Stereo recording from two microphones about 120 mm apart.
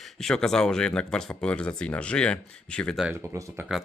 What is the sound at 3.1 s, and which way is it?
Speech, 25° right (ahead or behind).